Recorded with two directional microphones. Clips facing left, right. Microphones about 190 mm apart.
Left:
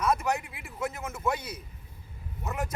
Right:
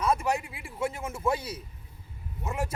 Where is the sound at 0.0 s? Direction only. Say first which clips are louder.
Right 1 dB; 30° right (ahead or behind).